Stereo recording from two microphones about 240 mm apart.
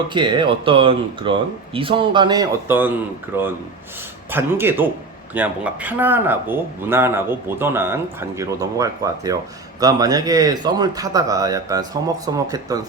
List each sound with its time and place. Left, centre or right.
0.1 s speech: centre